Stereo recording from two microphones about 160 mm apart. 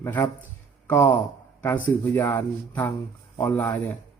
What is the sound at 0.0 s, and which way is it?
A man's voice, 15° left (ahead or behind).